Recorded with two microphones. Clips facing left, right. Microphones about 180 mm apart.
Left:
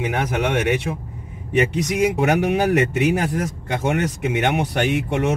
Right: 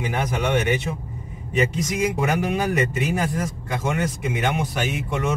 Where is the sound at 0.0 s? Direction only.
70° left (ahead or behind).